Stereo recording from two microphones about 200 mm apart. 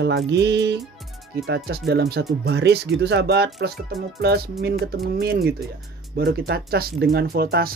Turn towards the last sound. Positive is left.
turn(degrees=-50)  # may be behind; listen again after turning